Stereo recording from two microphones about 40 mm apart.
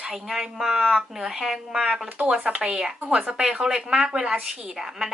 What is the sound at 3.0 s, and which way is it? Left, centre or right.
Speech, right.